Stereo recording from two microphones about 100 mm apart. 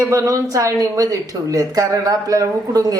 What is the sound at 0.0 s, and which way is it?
Speech, 30° right (ahead or behind).